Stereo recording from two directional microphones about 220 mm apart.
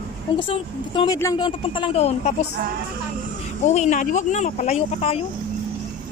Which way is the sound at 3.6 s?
30° left (ahead or behind).